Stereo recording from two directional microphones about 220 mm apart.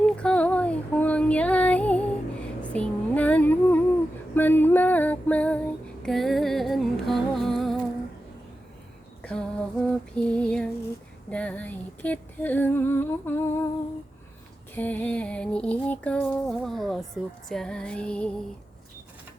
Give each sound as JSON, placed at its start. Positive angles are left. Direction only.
{"t": 0.0, "sound": "female singing", "side_deg": 5}
{"t": 4.4, "sound": "music", "side_deg": 10}
{"t": 9.2, "sound": "female singing", "side_deg": 5}
{"t": 14.8, "sound": "music", "side_deg": 5}